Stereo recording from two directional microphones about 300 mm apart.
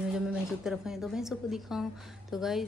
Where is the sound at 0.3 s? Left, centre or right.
Centre.